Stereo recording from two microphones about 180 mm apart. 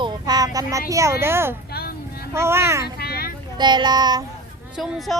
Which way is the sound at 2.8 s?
60° left (ahead or behind).